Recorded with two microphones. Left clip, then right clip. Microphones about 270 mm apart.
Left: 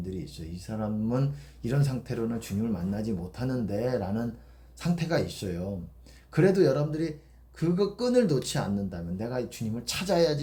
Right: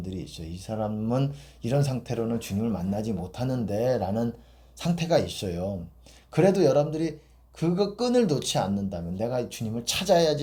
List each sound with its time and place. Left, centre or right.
0.0 s speech: right